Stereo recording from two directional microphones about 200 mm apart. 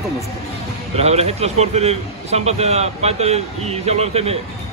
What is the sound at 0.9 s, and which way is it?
A man's voice, 30° right (ahead or behind).